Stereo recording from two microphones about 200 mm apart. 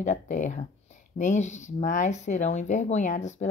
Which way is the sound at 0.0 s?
40° left (ahead or behind).